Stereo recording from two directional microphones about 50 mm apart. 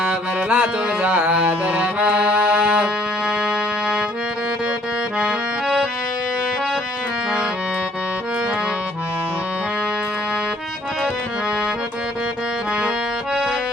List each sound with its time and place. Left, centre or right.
0.0 s music: right
5.2 s accordion: centre